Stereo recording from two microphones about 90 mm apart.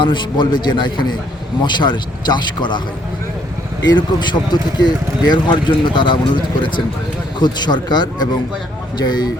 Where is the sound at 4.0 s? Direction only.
55° left (ahead or behind).